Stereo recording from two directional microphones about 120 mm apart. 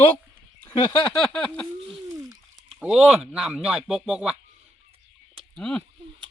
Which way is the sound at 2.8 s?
5° right (ahead or behind).